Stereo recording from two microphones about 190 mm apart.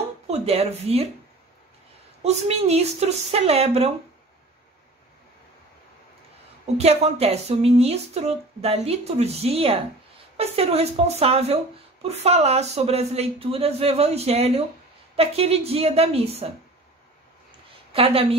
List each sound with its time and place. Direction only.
0.3 s speech: 35° right (ahead or behind)
2.2 s speech: 35° right (ahead or behind)
6.6 s speech: 35° right (ahead or behind)
17.9 s a woman's voice: 30° right (ahead or behind)